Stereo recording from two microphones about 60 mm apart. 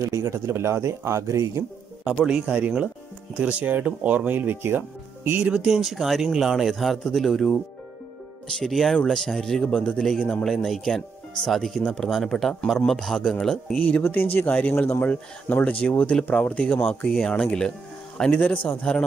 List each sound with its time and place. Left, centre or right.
0.0 s speech: right
0.5 s speech: right
2.2 s speech: centre
5.5 s speech: centre
8.6 s speech: centre
11.8 s speech: centre
12.1 s speech: centre
13.7 s speech: centre
14.0 s speech: left
17.1 s speech: centre
18.5 s speech: left
18.8 s speech: centre